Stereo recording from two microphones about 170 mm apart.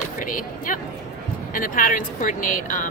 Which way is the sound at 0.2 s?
50° left (ahead or behind).